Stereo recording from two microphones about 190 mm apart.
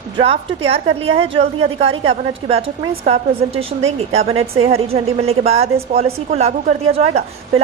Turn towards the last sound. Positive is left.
turn(degrees=-30)  # may be behind; listen again after turning